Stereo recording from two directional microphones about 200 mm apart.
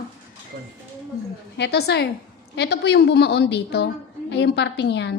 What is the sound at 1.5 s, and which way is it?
A woman's voice, 60° left (ahead or behind).